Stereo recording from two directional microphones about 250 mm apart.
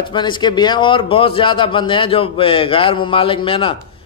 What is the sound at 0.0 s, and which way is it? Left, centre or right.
A man's voice, centre.